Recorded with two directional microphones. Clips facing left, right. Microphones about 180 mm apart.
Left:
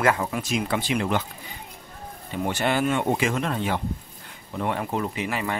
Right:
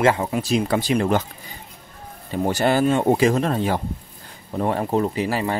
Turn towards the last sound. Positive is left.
turn(degrees=-35)  # may be behind; listen again after turning